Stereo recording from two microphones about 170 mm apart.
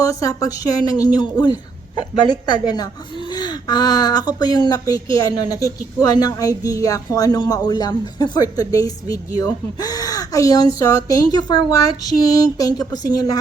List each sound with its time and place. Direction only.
0.0 s speech: 20° left (ahead or behind)